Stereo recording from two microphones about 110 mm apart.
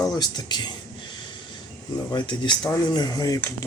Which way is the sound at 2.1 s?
45° left (ahead or behind).